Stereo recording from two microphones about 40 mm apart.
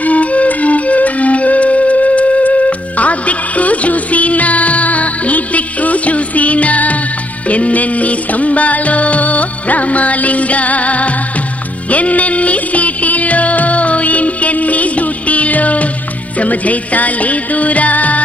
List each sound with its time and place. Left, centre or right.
0.0 s music: left